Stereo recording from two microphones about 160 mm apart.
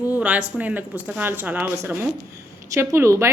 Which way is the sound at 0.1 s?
10° right (ahead or behind).